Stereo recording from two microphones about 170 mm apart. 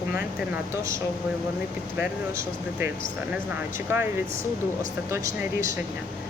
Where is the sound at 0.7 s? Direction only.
15° right (ahead or behind).